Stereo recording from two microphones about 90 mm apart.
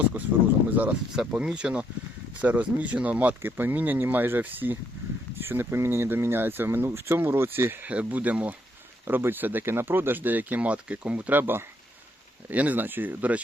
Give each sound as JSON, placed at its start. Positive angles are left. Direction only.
{"t": 0.7, "sound": "speech", "side_deg": -15}